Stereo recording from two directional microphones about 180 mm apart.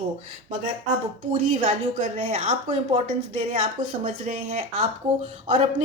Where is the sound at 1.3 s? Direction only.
45° right (ahead or behind).